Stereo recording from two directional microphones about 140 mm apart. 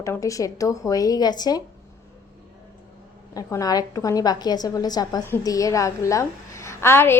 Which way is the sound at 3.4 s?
25° left (ahead or behind).